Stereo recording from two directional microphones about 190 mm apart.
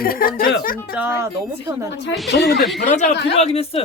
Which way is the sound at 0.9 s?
10° right (ahead or behind).